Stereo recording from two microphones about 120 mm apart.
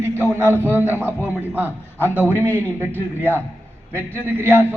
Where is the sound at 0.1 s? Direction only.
20° left (ahead or behind).